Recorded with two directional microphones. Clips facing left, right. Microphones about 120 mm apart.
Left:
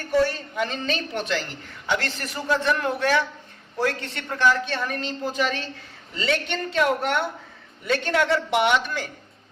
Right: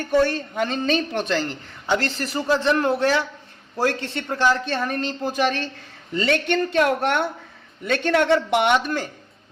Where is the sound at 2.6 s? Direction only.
25° right (ahead or behind).